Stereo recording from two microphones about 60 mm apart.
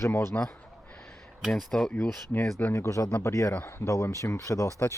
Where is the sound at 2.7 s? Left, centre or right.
Left.